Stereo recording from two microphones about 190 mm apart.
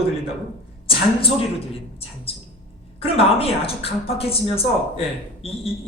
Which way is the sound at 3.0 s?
30° left (ahead or behind).